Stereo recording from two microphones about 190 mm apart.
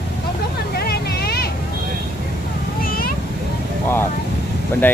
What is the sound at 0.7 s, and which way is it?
Vehicle, 55° left (ahead or behind).